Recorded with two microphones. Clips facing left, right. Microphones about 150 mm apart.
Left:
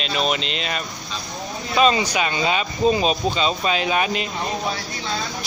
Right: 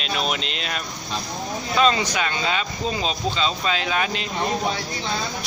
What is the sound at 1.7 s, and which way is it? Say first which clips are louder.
Speech: left 2 dB; 10° left (ahead or behind).